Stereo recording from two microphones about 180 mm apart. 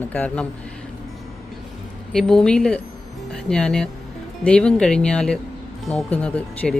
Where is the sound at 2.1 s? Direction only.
5° left (ahead or behind).